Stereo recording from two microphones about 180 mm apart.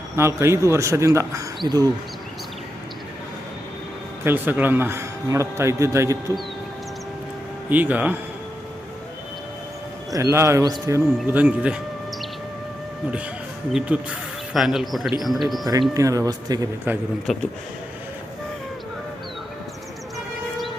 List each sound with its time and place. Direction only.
0.2 s a man's voice: 15° right (ahead or behind)
4.2 s a man's voice: 10° right (ahead or behind)
7.7 s a man's voice: 10° right (ahead or behind)
10.1 s a man's voice: 15° right (ahead or behind)
13.7 s a man's voice: 5° right (ahead or behind)
16.0 s speech: 20° right (ahead or behind)
17.3 s speech: centre (ahead or behind)